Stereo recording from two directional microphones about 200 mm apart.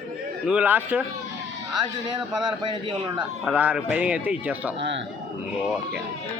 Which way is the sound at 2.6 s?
25° right (ahead or behind).